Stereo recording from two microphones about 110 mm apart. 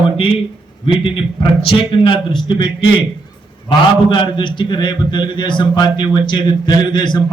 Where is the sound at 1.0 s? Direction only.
50° left (ahead or behind).